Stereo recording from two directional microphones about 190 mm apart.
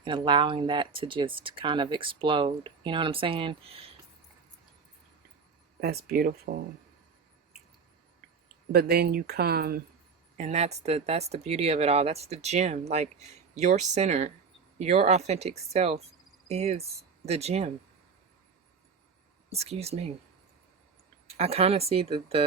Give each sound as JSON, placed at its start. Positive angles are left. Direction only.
{"t": 0.0, "sound": "speech", "side_deg": -25}
{"t": 5.8, "sound": "speech", "side_deg": -55}
{"t": 8.7, "sound": "speech", "side_deg": -55}
{"t": 10.3, "sound": "speech", "side_deg": -40}
{"t": 19.5, "sound": "speech", "side_deg": -35}
{"t": 21.3, "sound": "speech", "side_deg": -30}